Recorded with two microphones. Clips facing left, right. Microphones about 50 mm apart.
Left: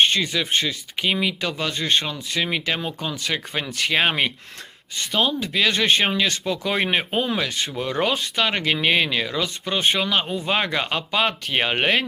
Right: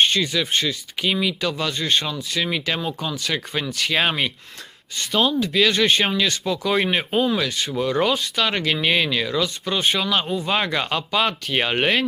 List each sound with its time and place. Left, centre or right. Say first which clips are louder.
0.1 s speech: right 1 dB; centre
1.0 s speech: right 1 dB; left
1.7 s speech: even; centre
2.4 s speech: even; centre
3.9 s speech: left 1 dB; left
4.9 s speech: right 2 dB; centre
6.6 s speech: right 2 dB; centre
8.4 s speech: even; centre